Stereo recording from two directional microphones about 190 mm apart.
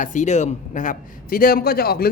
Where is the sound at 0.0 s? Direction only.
40° left (ahead or behind).